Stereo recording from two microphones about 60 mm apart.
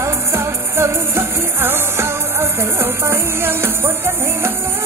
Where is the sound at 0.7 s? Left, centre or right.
Right.